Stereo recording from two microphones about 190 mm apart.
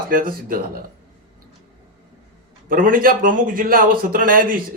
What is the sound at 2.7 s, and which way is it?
A man's voice, 45° right (ahead or behind).